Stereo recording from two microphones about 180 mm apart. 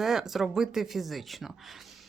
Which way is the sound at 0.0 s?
Centre (ahead or behind).